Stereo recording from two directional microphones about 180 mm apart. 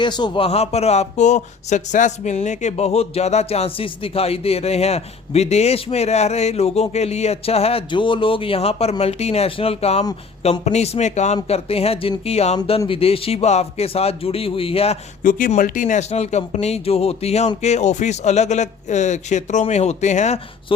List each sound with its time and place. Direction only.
0.0 s speech: 25° left (ahead or behind)
15.2 s speech: 50° left (ahead or behind)